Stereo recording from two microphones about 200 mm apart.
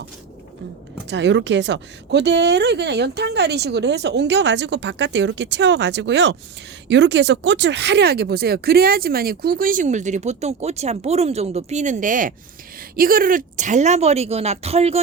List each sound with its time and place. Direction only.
1.0 s speech: 60° right (ahead or behind); by 15.0 s 30° right (ahead or behind)